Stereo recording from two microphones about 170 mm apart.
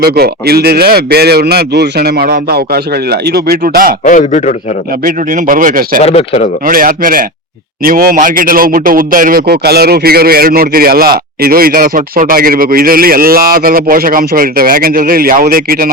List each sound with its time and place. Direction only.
0.0 s speech: 65° right (ahead or behind)
4.0 s a man's voice: 50° left (ahead or behind)
5.0 s a man's voice: 55° right (ahead or behind)
6.0 s speech: 40° left (ahead or behind)
6.7 s a man's voice: 55° right (ahead or behind)